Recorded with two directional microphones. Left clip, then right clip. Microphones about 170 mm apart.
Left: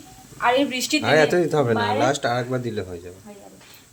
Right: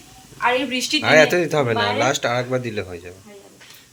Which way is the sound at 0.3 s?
65° left (ahead or behind).